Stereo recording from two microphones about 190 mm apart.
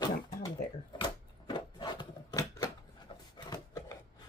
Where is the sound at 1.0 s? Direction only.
25° left (ahead or behind).